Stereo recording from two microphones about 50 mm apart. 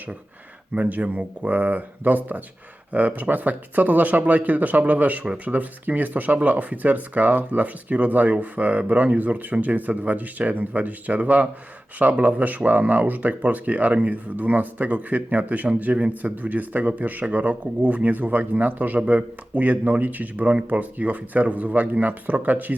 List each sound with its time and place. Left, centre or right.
0.7 s speech: right